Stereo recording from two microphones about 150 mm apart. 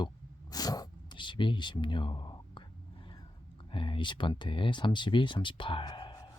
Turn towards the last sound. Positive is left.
turn(degrees=30)  # may be behind; listen again after turning